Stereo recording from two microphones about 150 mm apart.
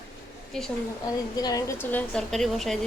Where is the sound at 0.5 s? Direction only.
5° left (ahead or behind).